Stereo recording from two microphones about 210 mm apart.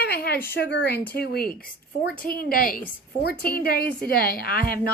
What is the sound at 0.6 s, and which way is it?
A woman's voice, 55° left (ahead or behind).